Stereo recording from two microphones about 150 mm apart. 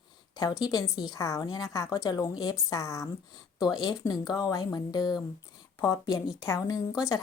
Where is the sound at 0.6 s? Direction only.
25° left (ahead or behind).